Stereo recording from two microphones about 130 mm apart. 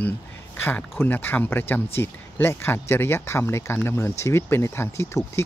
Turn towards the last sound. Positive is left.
turn(degrees=20)  # may be behind; listen again after turning